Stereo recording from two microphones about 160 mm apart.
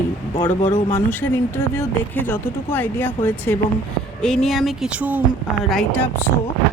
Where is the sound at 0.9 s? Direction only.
10° left (ahead or behind); by 5.2 s 10° right (ahead or behind).